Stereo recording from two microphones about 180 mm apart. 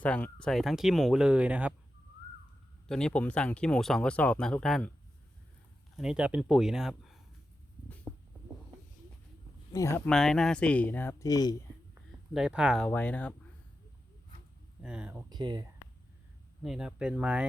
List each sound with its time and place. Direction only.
0.0 s speech: 5° left (ahead or behind)
2.8 s speech: 5° left (ahead or behind)
6.0 s speech: 5° right (ahead or behind)
9.7 s speech: 15° left (ahead or behind)
10.1 s speech: centre (ahead or behind); by 11.5 s 20° left (ahead or behind)
12.3 s speech: 5° right (ahead or behind)
14.8 s speech: 5° right (ahead or behind)
15.3 s speech: 25° right (ahead or behind)
16.6 s speech: 5° right (ahead or behind)